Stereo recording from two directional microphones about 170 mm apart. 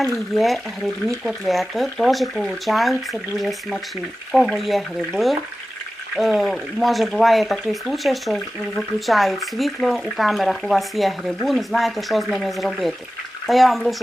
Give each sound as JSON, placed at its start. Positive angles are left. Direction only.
{"t": 0.0, "sound": "speech", "side_deg": 0}